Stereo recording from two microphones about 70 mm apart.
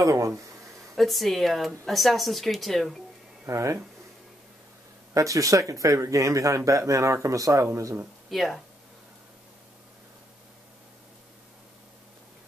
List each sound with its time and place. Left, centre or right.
0.0 s speech: right
0.9 s speech: centre
3.4 s speech: right
5.1 s speech: right
8.3 s speech: centre